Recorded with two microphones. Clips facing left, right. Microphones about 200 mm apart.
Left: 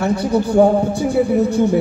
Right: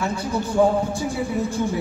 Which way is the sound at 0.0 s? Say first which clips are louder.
Left 8 dB; 65° left (ahead or behind).